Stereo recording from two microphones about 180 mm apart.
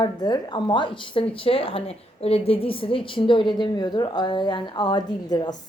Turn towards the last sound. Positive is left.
turn(degrees=20)  # may be behind; listen again after turning